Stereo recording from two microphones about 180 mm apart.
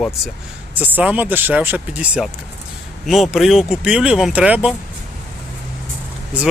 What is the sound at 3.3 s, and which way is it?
Speech, centre (ahead or behind).